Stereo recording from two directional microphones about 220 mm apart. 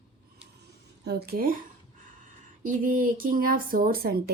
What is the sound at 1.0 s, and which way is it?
Speech, 45° right (ahead or behind).